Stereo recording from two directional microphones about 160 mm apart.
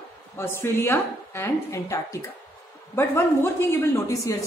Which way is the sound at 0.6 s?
15° left (ahead or behind).